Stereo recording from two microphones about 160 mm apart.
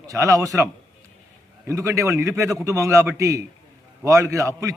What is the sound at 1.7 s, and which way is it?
A man's voice, 20° right (ahead or behind).